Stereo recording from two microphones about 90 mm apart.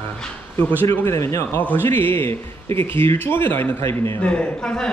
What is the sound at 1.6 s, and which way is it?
A man's voice, 20° left (ahead or behind).